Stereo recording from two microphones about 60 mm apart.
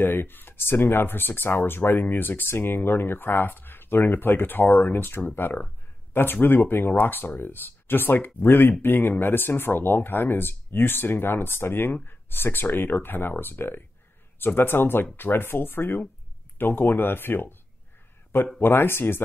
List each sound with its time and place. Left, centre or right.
0.0 s speech: left
18.6 s speech: left